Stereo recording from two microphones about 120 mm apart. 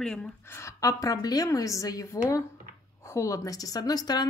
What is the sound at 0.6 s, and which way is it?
A woman's voice, 30° left (ahead or behind).